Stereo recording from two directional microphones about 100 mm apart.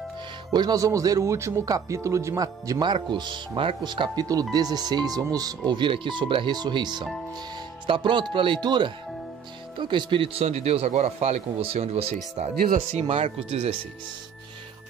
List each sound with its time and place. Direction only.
0.5 s speech: 45° right (ahead or behind)
2.8 s speech: 50° right (ahead or behind)
5.7 s a man's voice: 50° right (ahead or behind); by 13.7 s 80° right